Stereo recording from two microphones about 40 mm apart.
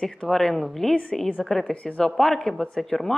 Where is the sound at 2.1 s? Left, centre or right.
Centre.